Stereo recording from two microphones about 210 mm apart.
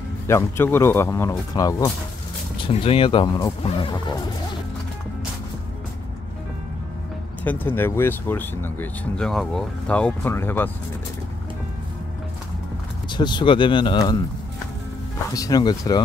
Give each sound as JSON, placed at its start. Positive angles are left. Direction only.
{"t": 0.3, "sound": "speech", "side_deg": 10}
{"t": 2.7, "sound": "speech", "side_deg": 25}
{"t": 7.4, "sound": "speech", "side_deg": 10}
{"t": 13.1, "sound": "speech", "side_deg": 20}
{"t": 15.3, "sound": "speech", "side_deg": 15}